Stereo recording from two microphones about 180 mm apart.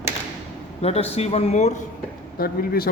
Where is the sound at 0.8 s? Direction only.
35° left (ahead or behind).